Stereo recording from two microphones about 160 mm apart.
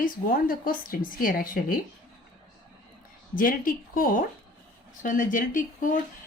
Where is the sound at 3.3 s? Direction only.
60° left (ahead or behind).